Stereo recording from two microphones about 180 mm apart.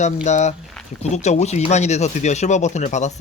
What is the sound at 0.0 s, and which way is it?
Speech, 40° left (ahead or behind).